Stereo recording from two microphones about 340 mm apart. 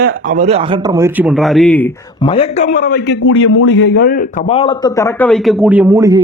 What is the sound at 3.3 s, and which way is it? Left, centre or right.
Speech, left.